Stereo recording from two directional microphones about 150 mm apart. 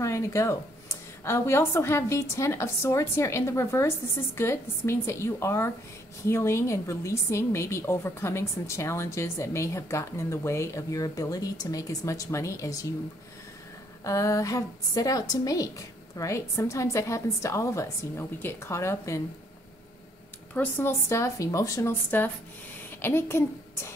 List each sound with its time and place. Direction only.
0.0 s a woman's voice: 20° left (ahead or behind)
14.0 s a woman's voice: 20° left (ahead or behind)
20.5 s a woman's voice: 15° left (ahead or behind)